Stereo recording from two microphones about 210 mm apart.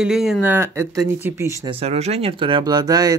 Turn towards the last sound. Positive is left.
turn(degrees=-20)  # may be behind; listen again after turning